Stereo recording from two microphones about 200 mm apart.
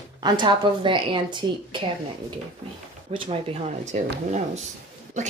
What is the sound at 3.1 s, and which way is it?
A woman's voice, 30° right (ahead or behind).